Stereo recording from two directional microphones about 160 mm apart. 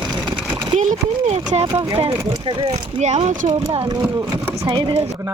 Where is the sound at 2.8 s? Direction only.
40° right (ahead or behind).